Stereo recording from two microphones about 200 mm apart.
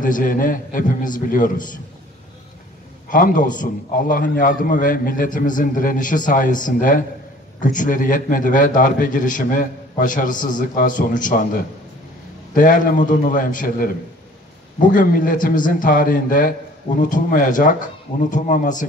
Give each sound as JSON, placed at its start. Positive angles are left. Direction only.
{"t": 0.0, "sound": "a man's voice", "side_deg": 40}
{"t": 3.1, "sound": "a man's voice", "side_deg": 40}